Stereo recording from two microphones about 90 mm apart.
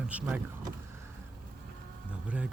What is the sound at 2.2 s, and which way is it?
Speech, 15° right (ahead or behind).